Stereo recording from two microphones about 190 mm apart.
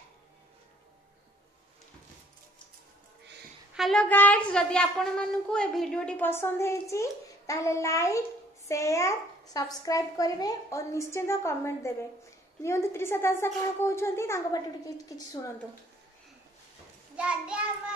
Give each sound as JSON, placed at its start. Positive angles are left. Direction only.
{"t": 3.7, "sound": "speech", "side_deg": 0}
{"t": 17.2, "sound": "a child's voice", "side_deg": -5}